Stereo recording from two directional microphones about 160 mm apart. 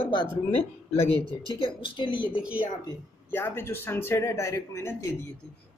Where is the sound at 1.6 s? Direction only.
30° left (ahead or behind).